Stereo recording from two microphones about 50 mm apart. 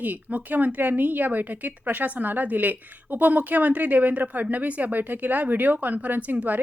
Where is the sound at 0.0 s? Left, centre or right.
Right.